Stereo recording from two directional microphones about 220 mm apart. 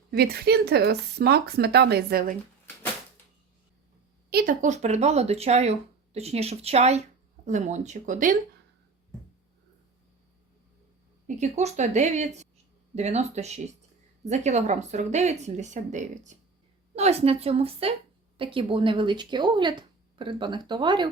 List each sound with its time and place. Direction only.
0.2 s speech: 45° right (ahead or behind)
4.3 s speech: 40° right (ahead or behind)
11.3 s speech: 30° right (ahead or behind)